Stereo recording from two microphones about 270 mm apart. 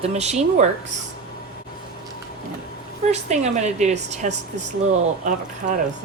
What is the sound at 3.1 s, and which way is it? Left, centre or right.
A woman's voice, right.